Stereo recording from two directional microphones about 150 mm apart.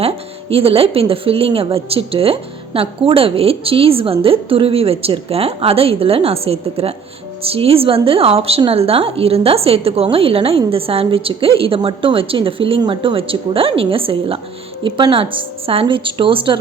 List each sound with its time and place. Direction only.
0.5 s speech: 40° right (ahead or behind)